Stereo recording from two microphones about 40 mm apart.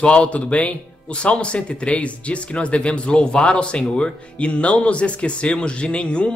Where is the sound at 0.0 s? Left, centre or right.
Left.